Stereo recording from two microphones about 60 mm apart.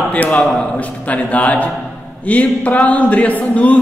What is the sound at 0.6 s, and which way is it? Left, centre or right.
A man's voice, left.